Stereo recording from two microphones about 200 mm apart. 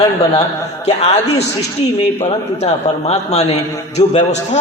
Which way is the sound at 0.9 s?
35° left (ahead or behind).